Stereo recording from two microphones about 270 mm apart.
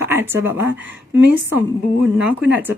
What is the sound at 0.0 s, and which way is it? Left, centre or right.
Speech, centre.